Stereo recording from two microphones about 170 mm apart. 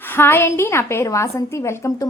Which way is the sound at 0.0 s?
10° left (ahead or behind).